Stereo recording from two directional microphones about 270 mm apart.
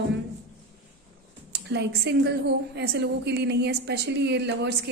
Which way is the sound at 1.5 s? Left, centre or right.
Right.